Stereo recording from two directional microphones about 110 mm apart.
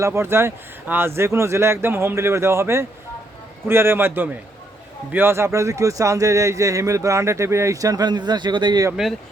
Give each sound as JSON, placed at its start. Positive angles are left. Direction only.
{"t": 0.0, "sound": "speech", "side_deg": -25}
{"t": 9.0, "sound": "speech", "side_deg": -5}